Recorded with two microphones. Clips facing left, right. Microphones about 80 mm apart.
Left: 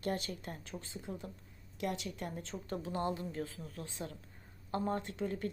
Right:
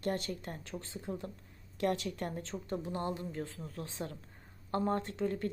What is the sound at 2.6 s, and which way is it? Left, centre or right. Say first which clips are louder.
Speech: left 1 dB; right.